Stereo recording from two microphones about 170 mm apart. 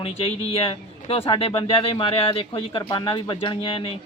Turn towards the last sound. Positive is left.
turn(degrees=30)  # may be behind; listen again after turning